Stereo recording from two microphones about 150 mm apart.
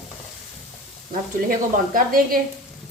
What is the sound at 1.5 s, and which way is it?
Speech, 70° right (ahead or behind).